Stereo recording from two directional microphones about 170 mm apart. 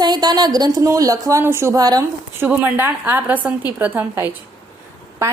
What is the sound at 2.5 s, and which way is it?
A woman's voice, 10° right (ahead or behind).